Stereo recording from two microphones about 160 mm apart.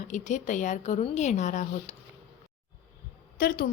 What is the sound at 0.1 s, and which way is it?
A woman's voice, 50° left (ahead or behind).